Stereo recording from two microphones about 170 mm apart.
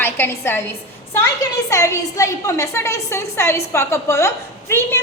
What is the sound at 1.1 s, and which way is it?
A woman's voice, 15° left (ahead or behind).